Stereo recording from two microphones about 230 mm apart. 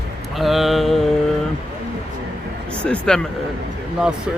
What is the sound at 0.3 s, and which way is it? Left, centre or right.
Mantra, centre.